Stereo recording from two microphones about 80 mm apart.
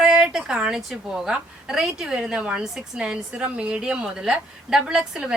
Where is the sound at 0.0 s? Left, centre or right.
Centre.